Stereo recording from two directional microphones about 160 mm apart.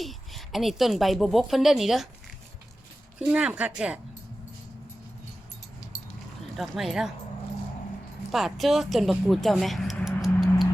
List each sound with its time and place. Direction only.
0.0 s a woman's voice: centre (ahead or behind)
3.2 s a woman's voice: 5° right (ahead or behind)
6.6 s a woman's voice: centre (ahead or behind)
8.3 s speech: centre (ahead or behind)